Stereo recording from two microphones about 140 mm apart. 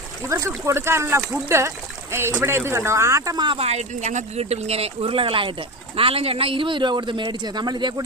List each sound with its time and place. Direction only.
0.2 s speech: 20° right (ahead or behind)